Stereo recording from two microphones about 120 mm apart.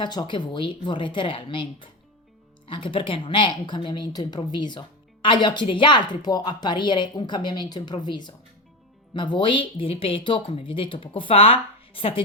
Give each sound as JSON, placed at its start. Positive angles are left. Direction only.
{"t": 0.0, "sound": "a woman's voice", "side_deg": 35}